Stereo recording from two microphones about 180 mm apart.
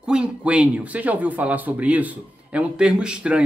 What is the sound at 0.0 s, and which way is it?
Speech, 5° right (ahead or behind).